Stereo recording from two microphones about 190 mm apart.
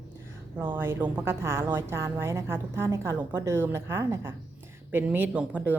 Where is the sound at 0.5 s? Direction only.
10° right (ahead or behind).